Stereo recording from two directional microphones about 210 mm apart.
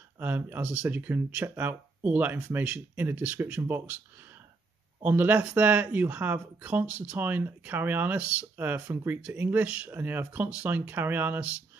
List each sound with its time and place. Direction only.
0.2 s speech: 10° right (ahead or behind)
5.0 s speech: 10° right (ahead or behind)